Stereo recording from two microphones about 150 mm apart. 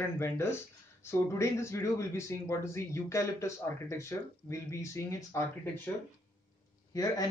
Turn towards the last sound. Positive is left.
turn(degrees=25)  # may be behind; listen again after turning